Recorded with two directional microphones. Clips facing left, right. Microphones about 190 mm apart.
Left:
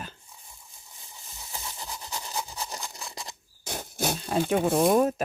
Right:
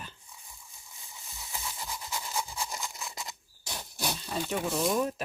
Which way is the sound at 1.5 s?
35° left (ahead or behind).